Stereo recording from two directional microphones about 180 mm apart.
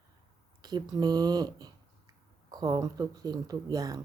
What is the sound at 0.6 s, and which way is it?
Speech, 20° right (ahead or behind).